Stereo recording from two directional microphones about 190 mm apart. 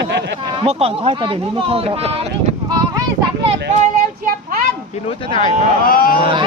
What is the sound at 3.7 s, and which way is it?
Speech, 40° right (ahead or behind).